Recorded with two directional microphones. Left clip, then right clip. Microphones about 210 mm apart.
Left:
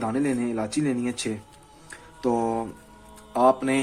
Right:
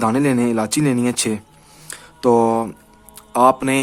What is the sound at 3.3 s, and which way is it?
Speech, 30° right (ahead or behind).